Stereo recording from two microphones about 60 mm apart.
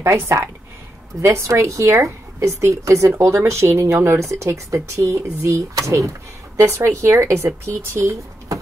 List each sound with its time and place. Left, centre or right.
0.0 s speech: right
6.6 s speech: right